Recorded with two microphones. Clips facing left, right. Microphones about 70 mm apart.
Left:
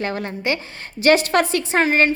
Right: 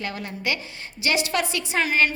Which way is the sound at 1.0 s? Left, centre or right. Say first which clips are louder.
Left 8 dB; left.